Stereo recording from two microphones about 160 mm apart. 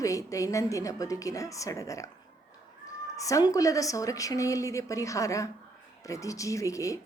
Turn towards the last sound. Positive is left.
turn(degrees=20)  # may be behind; listen again after turning